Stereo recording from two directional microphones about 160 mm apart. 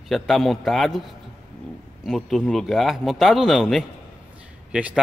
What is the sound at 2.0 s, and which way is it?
A man's voice, centre (ahead or behind).